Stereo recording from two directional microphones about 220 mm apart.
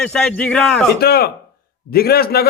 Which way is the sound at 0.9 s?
45° left (ahead or behind).